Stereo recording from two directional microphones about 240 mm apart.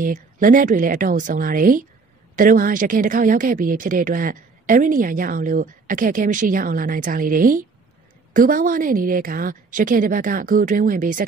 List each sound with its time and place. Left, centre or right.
0.0 s speech: right